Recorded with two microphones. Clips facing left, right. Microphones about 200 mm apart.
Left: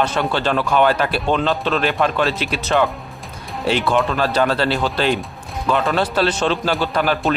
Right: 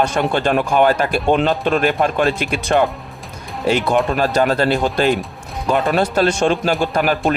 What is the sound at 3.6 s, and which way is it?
Speech, 45° right (ahead or behind).